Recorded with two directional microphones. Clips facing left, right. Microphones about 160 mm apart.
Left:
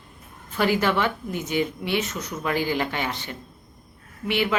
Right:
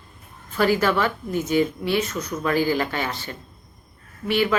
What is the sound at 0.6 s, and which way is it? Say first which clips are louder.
A woman's voice: right 2 dB; 15° left (ahead or behind).